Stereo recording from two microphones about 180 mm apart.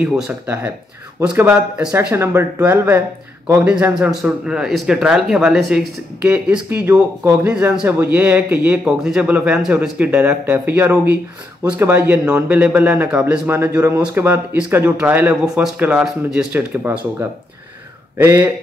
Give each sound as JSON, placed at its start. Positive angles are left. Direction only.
{"t": 0.0, "sound": "a man's voice", "side_deg": -10}
{"t": 18.1, "sound": "speech", "side_deg": -15}